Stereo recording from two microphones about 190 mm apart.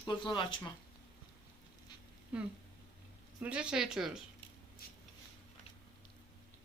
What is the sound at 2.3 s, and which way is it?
Speech, 5° right (ahead or behind).